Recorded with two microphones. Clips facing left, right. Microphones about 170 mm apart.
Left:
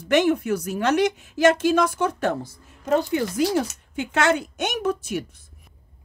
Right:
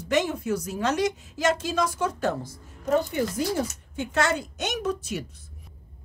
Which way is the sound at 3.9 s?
70° left (ahead or behind).